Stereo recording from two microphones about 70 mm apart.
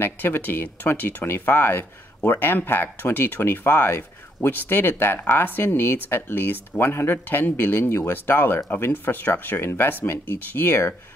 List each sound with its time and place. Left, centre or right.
0.0 s speech: left